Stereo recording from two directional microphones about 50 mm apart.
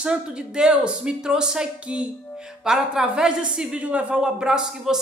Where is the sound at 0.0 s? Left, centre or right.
Centre.